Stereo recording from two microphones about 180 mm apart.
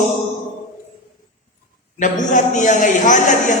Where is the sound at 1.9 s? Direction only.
45° left (ahead or behind).